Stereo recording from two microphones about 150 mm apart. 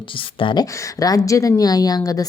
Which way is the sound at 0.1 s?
35° left (ahead or behind).